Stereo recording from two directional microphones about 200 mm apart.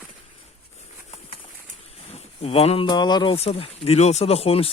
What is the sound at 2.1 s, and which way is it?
Speech, 30° left (ahead or behind).